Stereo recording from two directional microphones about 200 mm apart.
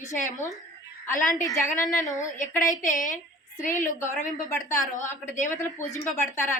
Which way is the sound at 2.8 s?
40° left (ahead or behind).